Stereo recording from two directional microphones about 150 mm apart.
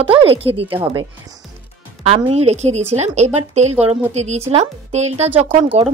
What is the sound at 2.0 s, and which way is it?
A woman's voice, 40° right (ahead or behind).